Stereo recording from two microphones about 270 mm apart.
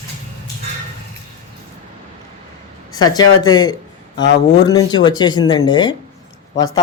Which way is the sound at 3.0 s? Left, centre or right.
Centre.